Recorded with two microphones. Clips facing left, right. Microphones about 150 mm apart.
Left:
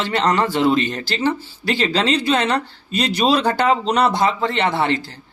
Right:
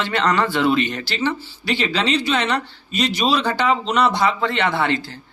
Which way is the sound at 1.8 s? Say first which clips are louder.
Left 2 dB; 40° left (ahead or behind).